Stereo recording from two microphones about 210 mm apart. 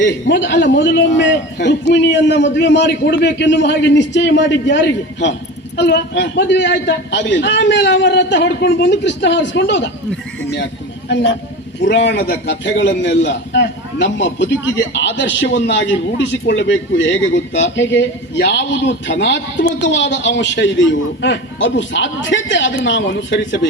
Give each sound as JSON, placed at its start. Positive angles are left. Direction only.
{"t": 0.0, "sound": "a man's voice", "side_deg": 55}
{"t": 11.9, "sound": "a man's voice", "side_deg": 55}